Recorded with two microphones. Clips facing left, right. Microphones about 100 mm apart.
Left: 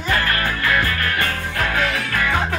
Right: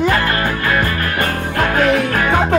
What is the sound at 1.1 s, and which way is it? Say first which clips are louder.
Music: right 5 dB; 45° right (ahead or behind).